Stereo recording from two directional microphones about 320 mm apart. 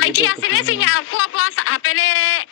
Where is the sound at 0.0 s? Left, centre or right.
Left.